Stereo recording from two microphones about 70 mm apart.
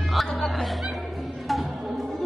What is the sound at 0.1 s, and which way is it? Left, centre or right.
Speech, centre.